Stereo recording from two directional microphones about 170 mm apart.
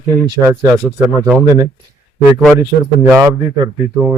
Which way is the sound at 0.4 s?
15° right (ahead or behind).